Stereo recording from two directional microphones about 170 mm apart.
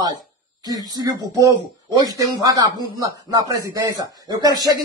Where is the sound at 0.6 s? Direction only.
20° right (ahead or behind).